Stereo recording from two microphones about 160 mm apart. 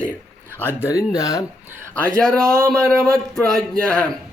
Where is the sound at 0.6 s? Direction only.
15° left (ahead or behind).